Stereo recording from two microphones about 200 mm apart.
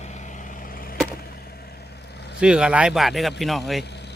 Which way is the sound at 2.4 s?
5° right (ahead or behind).